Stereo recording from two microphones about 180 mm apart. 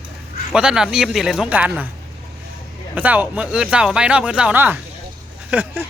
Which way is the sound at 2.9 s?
10° right (ahead or behind).